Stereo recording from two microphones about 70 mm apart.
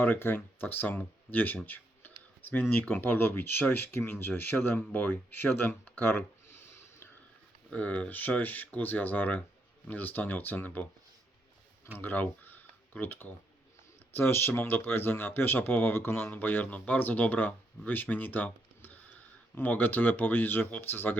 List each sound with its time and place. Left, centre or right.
0.0 s speech: left
7.7 s speech: centre
11.9 s speech: left